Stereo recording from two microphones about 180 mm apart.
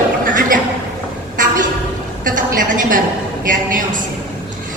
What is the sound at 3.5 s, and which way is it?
Speech, 50° right (ahead or behind).